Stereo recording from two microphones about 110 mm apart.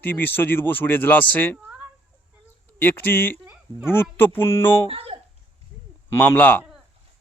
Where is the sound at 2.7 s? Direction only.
20° left (ahead or behind).